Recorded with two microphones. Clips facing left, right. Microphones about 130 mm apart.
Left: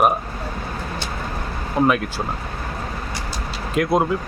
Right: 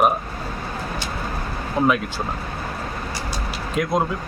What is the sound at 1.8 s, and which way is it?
Speech, centre (ahead or behind).